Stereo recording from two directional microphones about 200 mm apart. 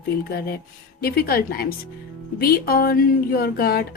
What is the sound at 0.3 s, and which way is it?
Speech, 50° left (ahead or behind).